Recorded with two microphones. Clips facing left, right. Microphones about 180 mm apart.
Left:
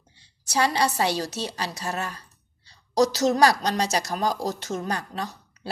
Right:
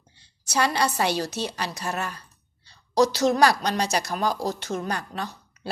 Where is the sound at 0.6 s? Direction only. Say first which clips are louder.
Left 1 dB; 25° left (ahead or behind).